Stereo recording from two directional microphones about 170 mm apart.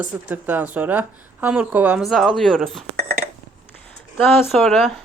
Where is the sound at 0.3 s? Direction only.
10° right (ahead or behind).